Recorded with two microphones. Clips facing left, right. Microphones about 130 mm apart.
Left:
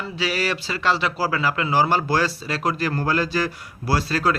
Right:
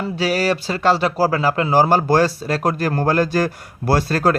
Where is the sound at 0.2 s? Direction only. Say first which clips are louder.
Right 5 dB; 40° right (ahead or behind).